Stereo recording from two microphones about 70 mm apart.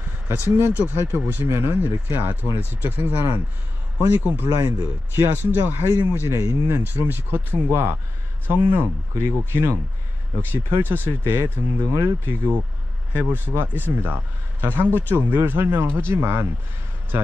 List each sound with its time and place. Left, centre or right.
0.3 s speech: right